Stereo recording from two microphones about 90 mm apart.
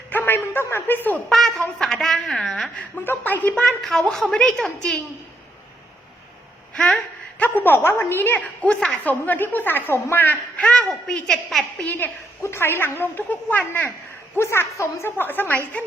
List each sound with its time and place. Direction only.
0.1 s a sound: 20° left (ahead or behind)
1.3 s a sound: 5° left (ahead or behind)
2.9 s speech: 25° left (ahead or behind)
3.5 s a child's voice: 10° left (ahead or behind)
6.7 s speech: 5° left (ahead or behind)
7.6 s speech: 25° left (ahead or behind)
8.4 s a woman's voice: 10° left (ahead or behind)
10.6 s a man's voice: 10° left (ahead or behind)
11.8 s speech: 20° left (ahead or behind)